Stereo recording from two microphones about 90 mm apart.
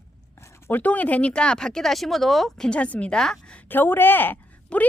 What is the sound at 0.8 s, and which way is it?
Speech, 15° left (ahead or behind).